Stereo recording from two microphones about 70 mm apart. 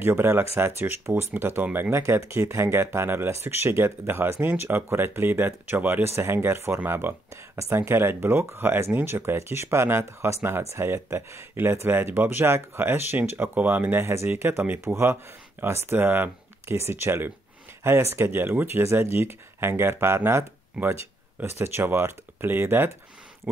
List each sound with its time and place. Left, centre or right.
0.0 s speech: right
6.0 s speech: right
7.5 s speech: right
13.9 s speech: right